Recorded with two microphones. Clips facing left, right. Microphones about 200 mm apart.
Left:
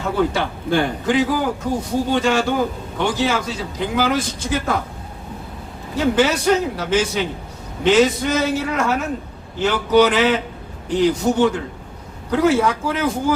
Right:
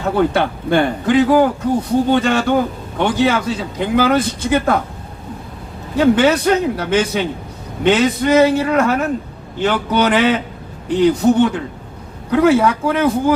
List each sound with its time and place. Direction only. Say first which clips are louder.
0.2 s a man's voice: right 4 dB; 60° right (ahead or behind)
6.0 s a man's voice: right 5 dB; 60° right (ahead or behind)